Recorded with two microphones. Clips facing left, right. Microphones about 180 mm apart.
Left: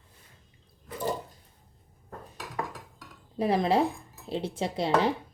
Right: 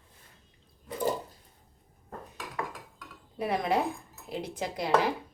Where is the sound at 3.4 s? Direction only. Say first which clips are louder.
Left 4 dB; 30° left (ahead or behind).